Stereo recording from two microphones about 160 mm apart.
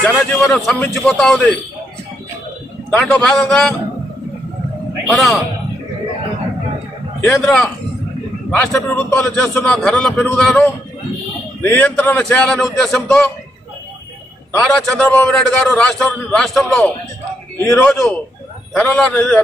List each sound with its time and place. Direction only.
0.0 s a man's voice: 5° left (ahead or behind)
2.9 s a man's voice: 5° left (ahead or behind)
5.0 s a man's voice: centre (ahead or behind)
7.2 s a man's voice: 5° left (ahead or behind)
14.6 s a man's voice: 10° left (ahead or behind)
17.6 s a man's voice: 20° left (ahead or behind)
18.7 s a man's voice: 5° left (ahead or behind)